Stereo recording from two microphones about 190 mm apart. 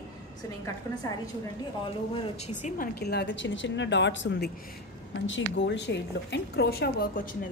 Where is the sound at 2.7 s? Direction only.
55° left (ahead or behind).